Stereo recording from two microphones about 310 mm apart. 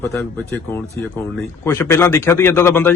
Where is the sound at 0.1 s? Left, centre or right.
Centre.